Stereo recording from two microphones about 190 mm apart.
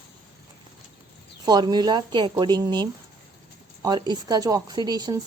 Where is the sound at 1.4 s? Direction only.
20° right (ahead or behind).